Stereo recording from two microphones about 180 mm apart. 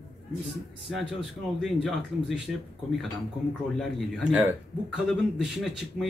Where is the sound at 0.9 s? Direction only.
Centre (ahead or behind).